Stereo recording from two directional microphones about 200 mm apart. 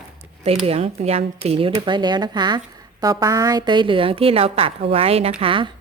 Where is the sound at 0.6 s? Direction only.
30° right (ahead or behind).